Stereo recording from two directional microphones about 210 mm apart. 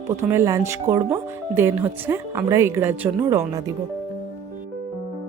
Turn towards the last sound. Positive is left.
turn(degrees=-15)  # may be behind; listen again after turning